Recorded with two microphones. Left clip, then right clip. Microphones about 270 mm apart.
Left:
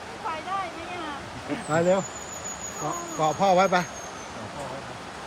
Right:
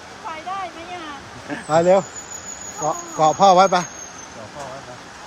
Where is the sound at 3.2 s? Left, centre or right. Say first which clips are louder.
Right 8 dB; centre.